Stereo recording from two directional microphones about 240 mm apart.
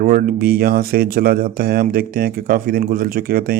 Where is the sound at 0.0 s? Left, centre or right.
Right.